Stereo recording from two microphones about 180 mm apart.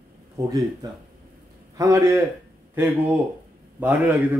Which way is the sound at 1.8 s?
15° right (ahead or behind).